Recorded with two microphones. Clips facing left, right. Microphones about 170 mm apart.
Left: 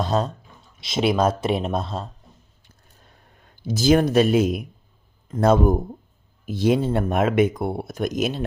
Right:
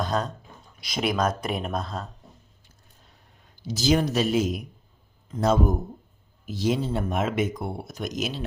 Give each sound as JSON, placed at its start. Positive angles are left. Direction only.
{"t": 0.0, "sound": "speech", "side_deg": 30}
{"t": 3.4, "sound": "speech", "side_deg": 55}